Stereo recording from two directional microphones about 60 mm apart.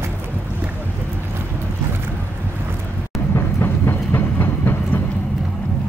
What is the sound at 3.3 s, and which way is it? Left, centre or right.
Train, left.